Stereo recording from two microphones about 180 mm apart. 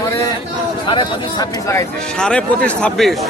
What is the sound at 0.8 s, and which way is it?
Speech, 25° left (ahead or behind).